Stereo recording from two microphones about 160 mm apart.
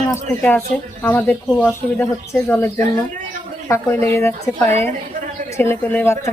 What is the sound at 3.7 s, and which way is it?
Speech, 15° left (ahead or behind).